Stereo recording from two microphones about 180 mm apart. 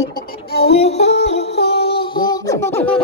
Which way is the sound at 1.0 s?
75° left (ahead or behind).